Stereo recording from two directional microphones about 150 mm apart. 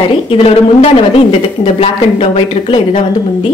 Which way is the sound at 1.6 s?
40° left (ahead or behind).